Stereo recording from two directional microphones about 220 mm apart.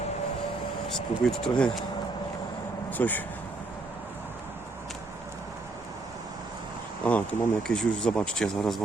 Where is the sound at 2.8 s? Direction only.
10° left (ahead or behind).